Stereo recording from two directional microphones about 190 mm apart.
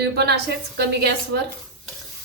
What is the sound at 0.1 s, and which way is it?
A woman's voice, 60° right (ahead or behind).